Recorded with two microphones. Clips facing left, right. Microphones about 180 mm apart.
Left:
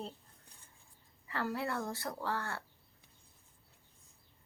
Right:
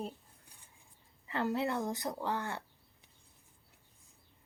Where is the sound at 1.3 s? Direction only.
20° right (ahead or behind).